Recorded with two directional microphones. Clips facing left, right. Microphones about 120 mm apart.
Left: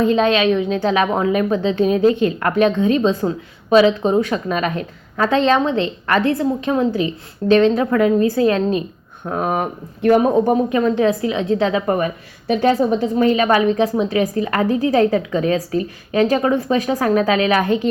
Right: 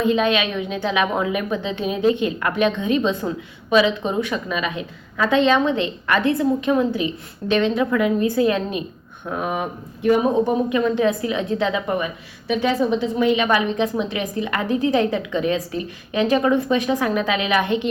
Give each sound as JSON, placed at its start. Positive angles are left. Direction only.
{"t": 0.0, "sound": "a woman's voice", "side_deg": 35}
{"t": 10.0, "sound": "speech", "side_deg": 55}
{"t": 10.7, "sound": "a woman's voice", "side_deg": 35}
{"t": 11.9, "sound": "a woman's voice", "side_deg": 50}